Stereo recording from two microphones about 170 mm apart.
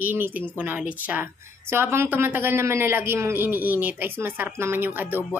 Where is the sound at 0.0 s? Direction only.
10° right (ahead or behind).